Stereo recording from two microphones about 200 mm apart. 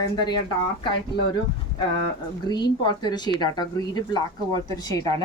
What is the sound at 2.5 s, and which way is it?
Speech, 20° left (ahead or behind).